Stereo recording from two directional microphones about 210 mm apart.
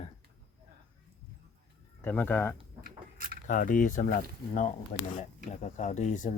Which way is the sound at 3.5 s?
40° left (ahead or behind).